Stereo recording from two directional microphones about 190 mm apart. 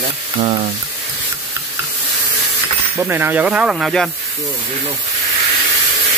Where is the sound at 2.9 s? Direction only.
15° right (ahead or behind).